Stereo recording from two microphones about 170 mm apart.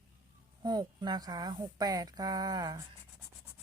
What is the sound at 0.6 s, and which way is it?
Speech, 25° right (ahead or behind).